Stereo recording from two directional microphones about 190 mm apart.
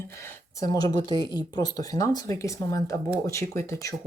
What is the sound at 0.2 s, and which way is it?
A woman's voice, 15° left (ahead or behind).